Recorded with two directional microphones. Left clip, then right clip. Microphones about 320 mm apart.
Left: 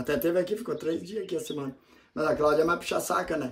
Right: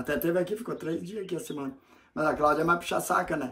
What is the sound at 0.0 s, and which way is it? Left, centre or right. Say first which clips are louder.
Speech: left 1 dB; centre.